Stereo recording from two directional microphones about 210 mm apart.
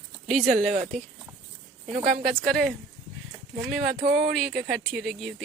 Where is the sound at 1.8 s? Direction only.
40° right (ahead or behind).